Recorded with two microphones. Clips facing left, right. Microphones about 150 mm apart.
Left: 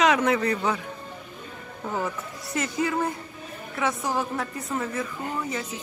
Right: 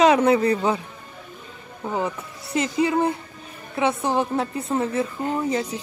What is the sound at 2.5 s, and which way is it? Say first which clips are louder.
A woman's voice: right 5 dB; 20° right (ahead or behind).